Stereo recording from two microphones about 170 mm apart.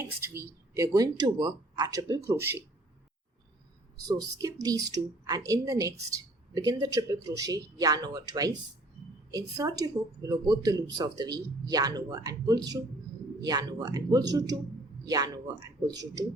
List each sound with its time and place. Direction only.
0.0 s speech: 15° right (ahead or behind)
4.1 s speech: 20° right (ahead or behind)